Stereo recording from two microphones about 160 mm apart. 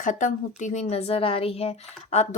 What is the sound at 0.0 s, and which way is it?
A woman's voice, 55° left (ahead or behind).